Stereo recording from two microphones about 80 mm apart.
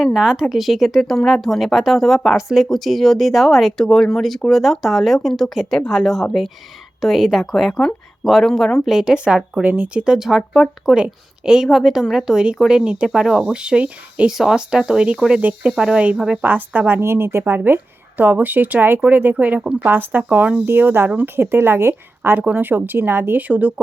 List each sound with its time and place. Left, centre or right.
0.0 s speech: centre
16.4 s a woman's voice: right